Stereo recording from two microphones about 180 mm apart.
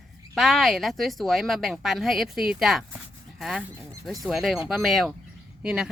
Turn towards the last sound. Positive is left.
turn(degrees=-5)  # may be behind; listen again after turning